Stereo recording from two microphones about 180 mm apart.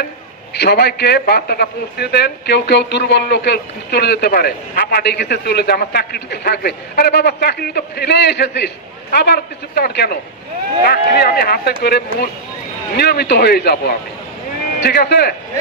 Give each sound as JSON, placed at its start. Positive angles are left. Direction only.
{"t": 0.6, "sound": "a man's voice", "side_deg": 65}
{"t": 12.9, "sound": "a man's voice", "side_deg": 60}